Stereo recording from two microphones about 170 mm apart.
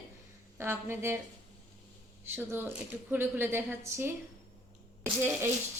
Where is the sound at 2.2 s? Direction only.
15° right (ahead or behind).